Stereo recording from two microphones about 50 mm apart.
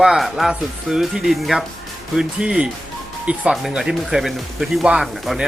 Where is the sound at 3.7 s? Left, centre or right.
Centre.